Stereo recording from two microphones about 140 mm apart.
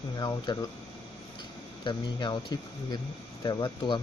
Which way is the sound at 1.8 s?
35° left (ahead or behind).